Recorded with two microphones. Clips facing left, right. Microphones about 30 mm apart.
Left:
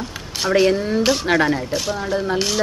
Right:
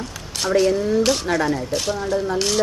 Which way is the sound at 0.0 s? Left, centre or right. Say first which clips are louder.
Left 2 dB; left.